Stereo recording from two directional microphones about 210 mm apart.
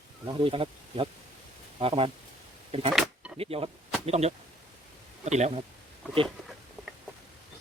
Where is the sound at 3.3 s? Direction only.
30° right (ahead or behind).